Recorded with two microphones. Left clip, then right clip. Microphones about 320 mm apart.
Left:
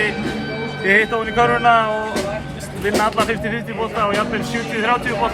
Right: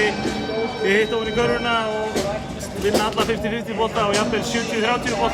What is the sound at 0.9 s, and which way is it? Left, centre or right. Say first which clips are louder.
Speech: left 5 dB; centre.